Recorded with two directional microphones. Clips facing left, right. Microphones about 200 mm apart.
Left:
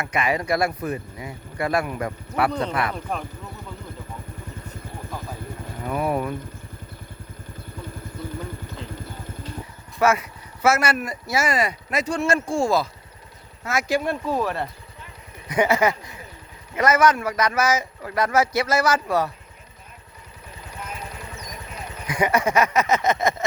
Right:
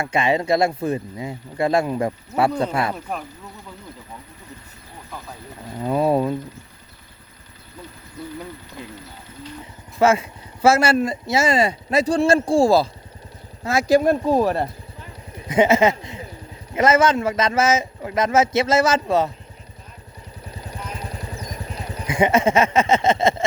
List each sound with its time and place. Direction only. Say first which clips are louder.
0.0 s speech: right 4 dB; 25° right (ahead or behind)
3.1 s speech: even; 5° right (ahead or behind)
5.8 s speech: right 6 dB; 25° right (ahead or behind)
10.0 s speech: right 3 dB; 25° right (ahead or behind)
15.4 s speech: right 4 dB; 25° right (ahead or behind)
20.7 s vehicle: right 2 dB; 35° right (ahead or behind)